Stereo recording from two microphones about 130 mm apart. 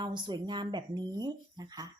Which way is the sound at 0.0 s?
35° right (ahead or behind).